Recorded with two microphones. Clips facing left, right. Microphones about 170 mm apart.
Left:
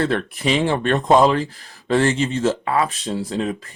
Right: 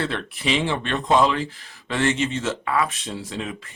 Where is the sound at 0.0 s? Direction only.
45° left (ahead or behind).